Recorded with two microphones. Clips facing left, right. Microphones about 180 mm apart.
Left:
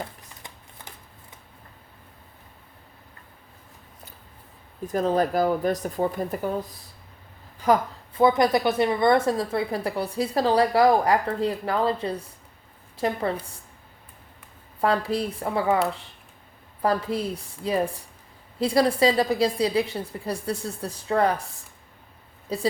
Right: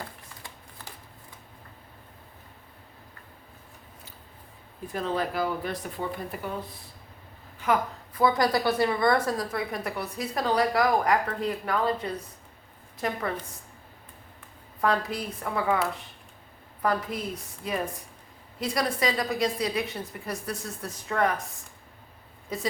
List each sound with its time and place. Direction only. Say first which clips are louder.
4.9 s a woman's voice: left 7 dB; 40° left (ahead or behind)
8.2 s a woman's voice: left 4 dB; 20° left (ahead or behind)
14.8 s a woman's voice: left 4 dB; 30° left (ahead or behind)
16.8 s a woman's voice: left 4 dB; 30° left (ahead or behind)
22.5 s a woman's voice: left 5 dB; 30° left (ahead or behind)